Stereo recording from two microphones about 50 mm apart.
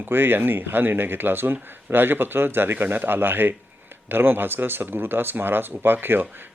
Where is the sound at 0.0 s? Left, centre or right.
Right.